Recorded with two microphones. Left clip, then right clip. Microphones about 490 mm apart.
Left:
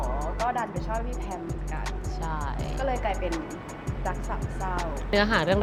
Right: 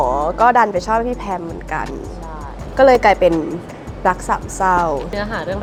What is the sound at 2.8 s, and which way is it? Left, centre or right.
Speech, right.